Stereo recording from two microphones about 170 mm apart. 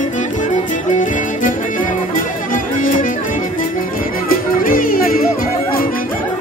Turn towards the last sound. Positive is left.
turn(degrees=60)  # may be behind; listen again after turning